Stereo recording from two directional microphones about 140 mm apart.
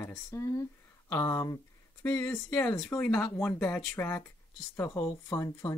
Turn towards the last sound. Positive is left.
turn(degrees=25)  # may be behind; listen again after turning